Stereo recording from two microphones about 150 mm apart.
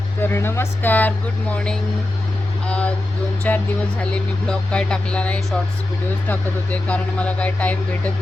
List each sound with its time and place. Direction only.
0.2 s speech: 15° left (ahead or behind)